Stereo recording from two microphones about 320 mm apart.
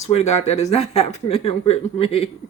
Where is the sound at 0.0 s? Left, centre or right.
Centre.